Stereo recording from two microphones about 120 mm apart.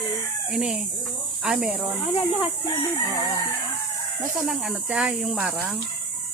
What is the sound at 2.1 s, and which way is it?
Speech, 50° left (ahead or behind).